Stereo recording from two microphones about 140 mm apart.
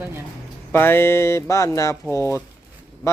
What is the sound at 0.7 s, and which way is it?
Speech, 15° left (ahead or behind).